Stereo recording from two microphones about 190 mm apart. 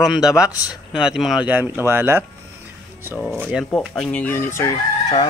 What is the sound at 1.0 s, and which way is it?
Speech, centre (ahead or behind).